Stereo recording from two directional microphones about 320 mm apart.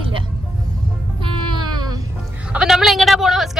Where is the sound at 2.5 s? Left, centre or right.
Centre.